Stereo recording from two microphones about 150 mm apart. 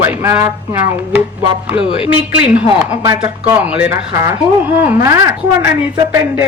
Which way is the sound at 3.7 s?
10° right (ahead or behind).